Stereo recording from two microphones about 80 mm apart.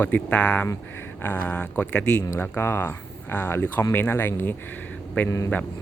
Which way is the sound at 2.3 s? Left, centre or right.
Left.